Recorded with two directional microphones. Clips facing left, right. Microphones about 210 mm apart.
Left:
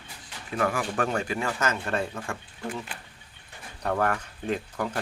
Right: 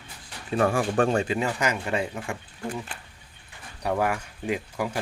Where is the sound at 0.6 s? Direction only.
30° right (ahead or behind).